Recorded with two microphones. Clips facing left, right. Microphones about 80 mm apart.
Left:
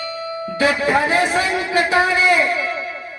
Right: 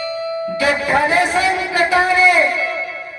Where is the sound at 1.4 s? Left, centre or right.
Left.